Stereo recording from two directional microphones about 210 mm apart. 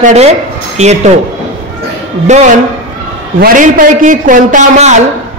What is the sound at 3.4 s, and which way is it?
A man's voice, 40° right (ahead or behind).